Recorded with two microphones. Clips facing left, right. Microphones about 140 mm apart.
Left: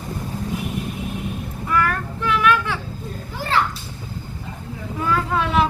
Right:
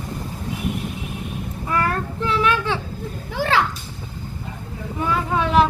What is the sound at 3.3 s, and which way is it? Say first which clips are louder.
Children playing: right 2 dB; 90° right.